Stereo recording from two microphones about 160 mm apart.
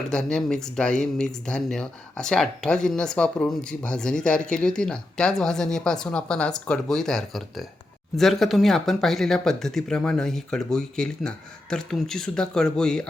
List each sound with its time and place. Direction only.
0.1 s speech: 5° left (ahead or behind)